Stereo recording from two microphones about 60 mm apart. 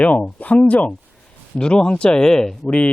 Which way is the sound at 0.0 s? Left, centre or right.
Left.